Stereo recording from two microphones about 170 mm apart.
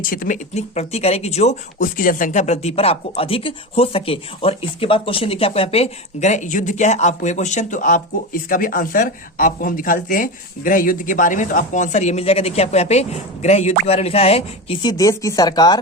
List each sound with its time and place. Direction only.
0.0 s speech: 55° left (ahead or behind)
0.5 s speech: 40° left (ahead or behind); by 15.8 s 25° left (ahead or behind)